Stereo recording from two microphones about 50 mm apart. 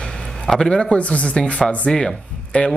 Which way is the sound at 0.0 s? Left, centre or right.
Centre.